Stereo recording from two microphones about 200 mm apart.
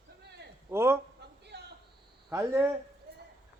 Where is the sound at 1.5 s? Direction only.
55° right (ahead or behind).